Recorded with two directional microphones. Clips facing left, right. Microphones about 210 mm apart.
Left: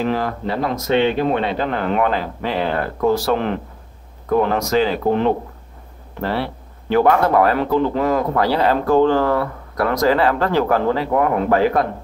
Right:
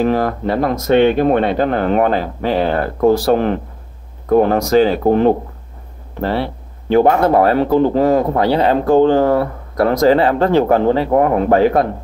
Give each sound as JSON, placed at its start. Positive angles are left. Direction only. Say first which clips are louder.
{"t": 0.0, "sound": "speech", "louder": "right 5 dB", "side_deg": -45}
{"t": 6.2, "sound": "speech", "louder": "right 4 dB", "side_deg": -25}